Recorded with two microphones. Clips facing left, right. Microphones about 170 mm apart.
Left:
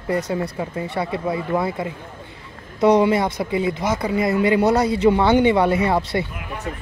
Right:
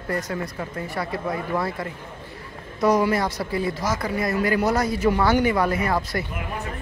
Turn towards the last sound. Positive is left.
turn(degrees=25)  # may be behind; listen again after turning